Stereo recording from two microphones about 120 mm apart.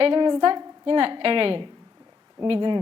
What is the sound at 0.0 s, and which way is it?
A woman's voice, 40° right (ahead or behind).